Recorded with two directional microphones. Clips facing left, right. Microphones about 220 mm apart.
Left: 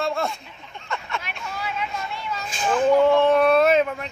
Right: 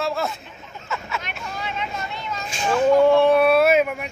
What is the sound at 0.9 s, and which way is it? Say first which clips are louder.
Vehicle: right 1 dB; 5° right (ahead or behind).